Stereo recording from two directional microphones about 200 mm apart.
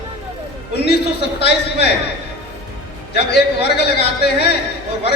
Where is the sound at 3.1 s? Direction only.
55° left (ahead or behind).